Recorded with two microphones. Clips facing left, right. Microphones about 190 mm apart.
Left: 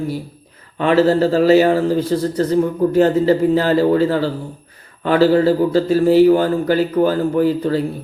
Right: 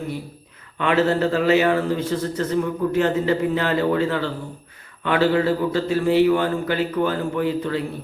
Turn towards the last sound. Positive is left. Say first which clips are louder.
# left 6 dB
turn(degrees=40)  # may be behind; listen again after turning